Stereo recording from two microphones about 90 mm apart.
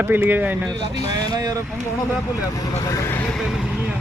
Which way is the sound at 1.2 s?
45° right (ahead or behind).